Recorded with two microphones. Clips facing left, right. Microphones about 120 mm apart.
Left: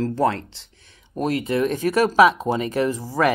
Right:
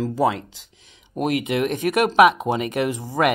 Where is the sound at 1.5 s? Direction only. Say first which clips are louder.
Left 1 dB; 70° right (ahead or behind).